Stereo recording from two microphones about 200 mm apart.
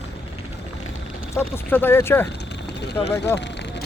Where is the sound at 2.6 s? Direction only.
55° left (ahead or behind).